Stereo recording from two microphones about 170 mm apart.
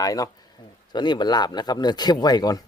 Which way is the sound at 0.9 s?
25° left (ahead or behind).